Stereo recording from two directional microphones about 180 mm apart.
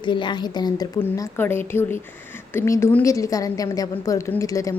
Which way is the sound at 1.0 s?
10° left (ahead or behind).